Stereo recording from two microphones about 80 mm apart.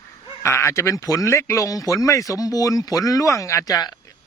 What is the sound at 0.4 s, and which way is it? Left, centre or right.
A man's voice, left.